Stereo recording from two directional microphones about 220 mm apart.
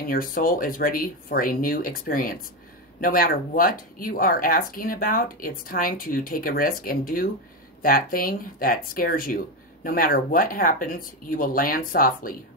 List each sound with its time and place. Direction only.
0.1 s speech: 40° left (ahead or behind)